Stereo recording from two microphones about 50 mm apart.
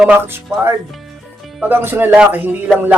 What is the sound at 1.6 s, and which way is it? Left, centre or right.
Speech, right.